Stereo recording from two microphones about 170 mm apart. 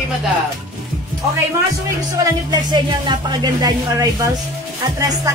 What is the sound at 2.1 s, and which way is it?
Speech, 20° right (ahead or behind).